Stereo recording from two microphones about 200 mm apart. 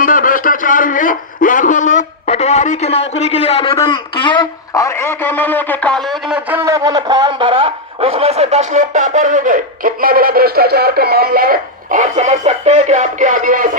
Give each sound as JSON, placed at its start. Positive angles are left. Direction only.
{"t": 0.0, "sound": "a man's voice", "side_deg": 45}